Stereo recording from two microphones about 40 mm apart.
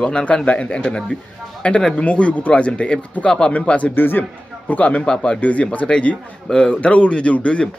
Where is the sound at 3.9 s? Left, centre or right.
Left.